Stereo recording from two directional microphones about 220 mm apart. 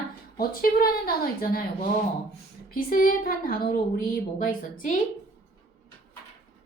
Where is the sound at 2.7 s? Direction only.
40° left (ahead or behind).